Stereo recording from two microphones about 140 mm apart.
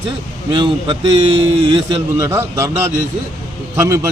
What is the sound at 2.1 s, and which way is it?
A man's voice, 20° right (ahead or behind).